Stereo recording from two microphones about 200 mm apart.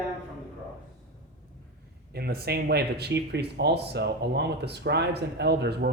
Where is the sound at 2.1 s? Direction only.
50° right (ahead or behind).